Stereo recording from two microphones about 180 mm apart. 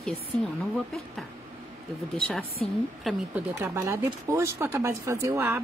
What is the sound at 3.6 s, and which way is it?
Speech, 15° right (ahead or behind).